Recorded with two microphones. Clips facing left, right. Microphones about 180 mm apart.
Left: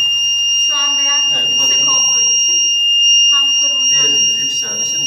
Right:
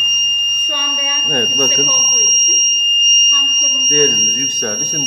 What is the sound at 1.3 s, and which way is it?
Speech, 50° right (ahead or behind).